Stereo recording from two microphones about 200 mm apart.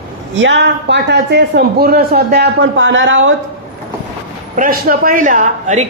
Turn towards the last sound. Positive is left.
turn(degrees=-40)  # may be behind; listen again after turning